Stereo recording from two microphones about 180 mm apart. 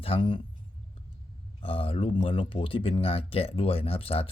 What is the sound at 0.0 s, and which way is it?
Speech, 30° left (ahead or behind).